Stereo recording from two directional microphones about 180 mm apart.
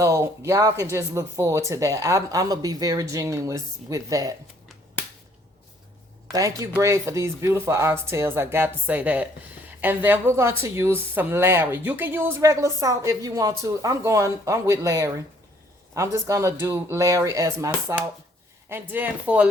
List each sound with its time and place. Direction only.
0.0 s speech: 15° right (ahead or behind)
6.3 s speech: 20° right (ahead or behind)